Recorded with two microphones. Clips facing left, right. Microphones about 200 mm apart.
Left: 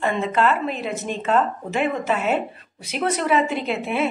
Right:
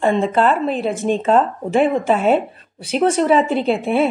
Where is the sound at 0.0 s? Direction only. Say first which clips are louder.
Right 5 dB; 30° right (ahead or behind).